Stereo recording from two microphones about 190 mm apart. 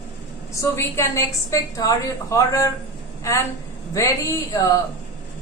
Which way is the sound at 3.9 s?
15° left (ahead or behind).